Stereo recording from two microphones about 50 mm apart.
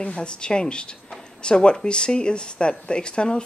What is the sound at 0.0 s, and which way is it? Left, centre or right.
A woman's voice, centre.